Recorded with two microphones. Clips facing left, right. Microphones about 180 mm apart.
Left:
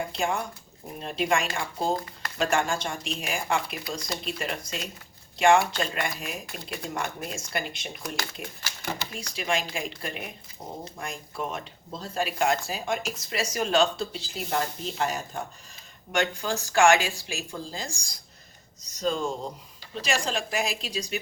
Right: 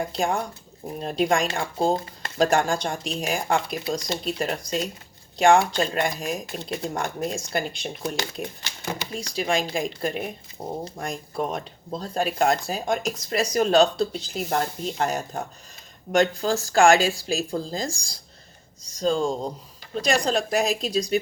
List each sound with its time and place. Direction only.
0.1 s speech: 35° right (ahead or behind)